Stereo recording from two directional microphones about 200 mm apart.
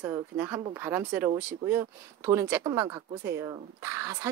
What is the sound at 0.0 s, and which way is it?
Speech, 10° right (ahead or behind).